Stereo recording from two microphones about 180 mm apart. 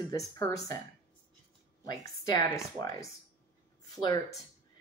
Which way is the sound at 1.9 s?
20° left (ahead or behind).